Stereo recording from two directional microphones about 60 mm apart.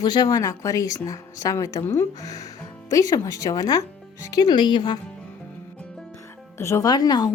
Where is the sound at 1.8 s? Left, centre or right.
Left.